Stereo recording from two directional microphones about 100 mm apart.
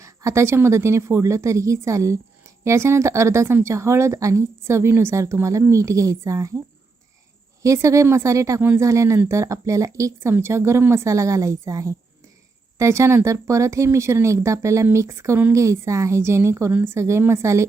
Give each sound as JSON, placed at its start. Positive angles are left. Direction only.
{"t": 0.0, "sound": "speech", "side_deg": -30}
{"t": 7.6, "sound": "a woman's voice", "side_deg": -30}